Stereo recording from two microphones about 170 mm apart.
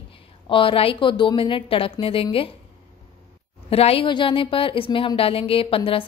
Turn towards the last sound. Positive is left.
turn(degrees=30)  # may be behind; listen again after turning